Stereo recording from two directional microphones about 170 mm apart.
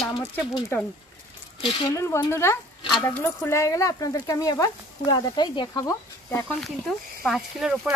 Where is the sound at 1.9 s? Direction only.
15° left (ahead or behind).